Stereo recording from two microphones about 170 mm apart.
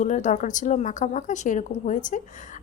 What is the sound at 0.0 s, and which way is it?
Speech, 50° left (ahead or behind).